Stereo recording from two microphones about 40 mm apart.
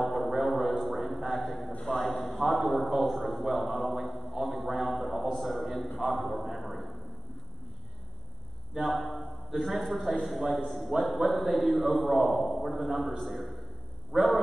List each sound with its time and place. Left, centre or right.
0.0 s music: centre
2.0 s a man's voice: centre
3.7 s a sound: centre
5.3 s a man's voice: centre
8.8 s a man's voice: centre
12.9 s a man's voice: centre
13.2 s a man's voice: centre
14.1 s a man's voice: centre